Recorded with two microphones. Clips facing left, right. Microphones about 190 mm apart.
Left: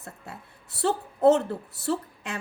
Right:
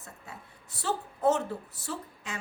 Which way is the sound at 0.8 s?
60° left (ahead or behind).